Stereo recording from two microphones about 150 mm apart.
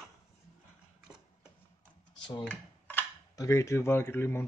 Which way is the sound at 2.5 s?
10° left (ahead or behind).